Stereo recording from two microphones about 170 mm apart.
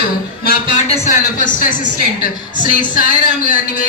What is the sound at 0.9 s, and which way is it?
A woman's voice, 45° left (ahead or behind).